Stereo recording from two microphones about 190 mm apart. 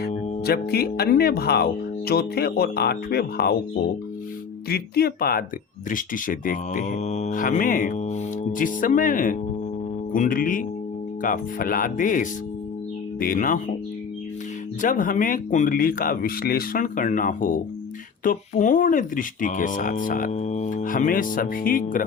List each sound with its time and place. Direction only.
0.4 s speech: 55° left (ahead or behind)
14.8 s speech: 45° left (ahead or behind)